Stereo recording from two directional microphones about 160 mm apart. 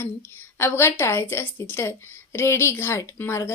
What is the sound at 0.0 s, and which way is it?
A woman's voice, 15° left (ahead or behind).